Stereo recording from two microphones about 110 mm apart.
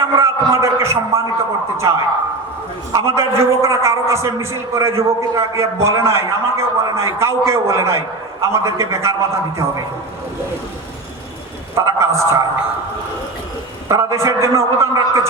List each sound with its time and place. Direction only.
0.0 s a man's voice: 25° right (ahead or behind)
2.9 s a man's voice: 25° right (ahead or behind)
11.7 s a sound: 25° right (ahead or behind)
13.8 s a man's voice: 25° right (ahead or behind)